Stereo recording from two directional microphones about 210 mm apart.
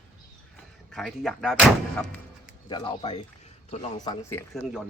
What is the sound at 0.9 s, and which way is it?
Speech, centre (ahead or behind).